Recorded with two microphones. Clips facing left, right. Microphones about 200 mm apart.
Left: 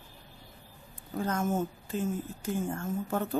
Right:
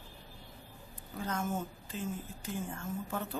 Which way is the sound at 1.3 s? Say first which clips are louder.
Left 5 dB; 45° left (ahead or behind).